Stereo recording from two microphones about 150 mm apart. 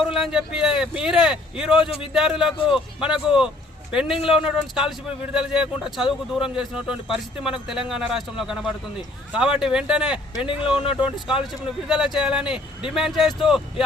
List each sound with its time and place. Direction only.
0.0 s speech: 5° right (ahead or behind)
3.0 s speech: 5° right (ahead or behind)
10.3 s speech: 35° left (ahead or behind)
10.7 s speech: 5° right (ahead or behind)